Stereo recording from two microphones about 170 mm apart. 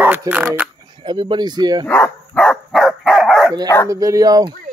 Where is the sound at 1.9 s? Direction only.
10° left (ahead or behind).